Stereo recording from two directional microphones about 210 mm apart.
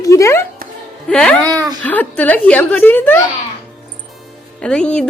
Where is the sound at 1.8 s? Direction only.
10° left (ahead or behind).